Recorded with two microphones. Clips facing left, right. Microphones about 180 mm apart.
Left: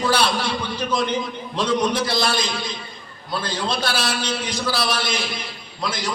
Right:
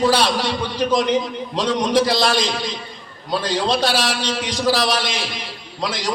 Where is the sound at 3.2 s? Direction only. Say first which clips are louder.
Right 5 dB; 90° right.